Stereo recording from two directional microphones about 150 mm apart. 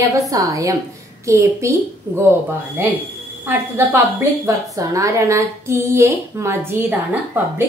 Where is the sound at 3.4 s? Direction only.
15° right (ahead or behind).